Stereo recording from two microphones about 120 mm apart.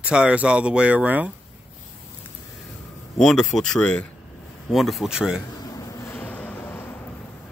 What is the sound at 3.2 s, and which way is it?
Speech, 5° left (ahead or behind).